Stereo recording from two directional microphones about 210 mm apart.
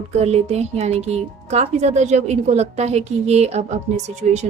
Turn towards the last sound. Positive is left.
turn(degrees=-35)  # may be behind; listen again after turning